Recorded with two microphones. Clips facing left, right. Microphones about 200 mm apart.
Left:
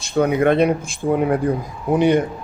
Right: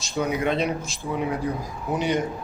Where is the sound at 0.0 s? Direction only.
55° left (ahead or behind).